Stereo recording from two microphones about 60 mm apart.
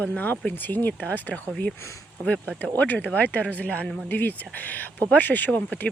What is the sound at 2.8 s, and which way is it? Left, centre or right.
Speech, left.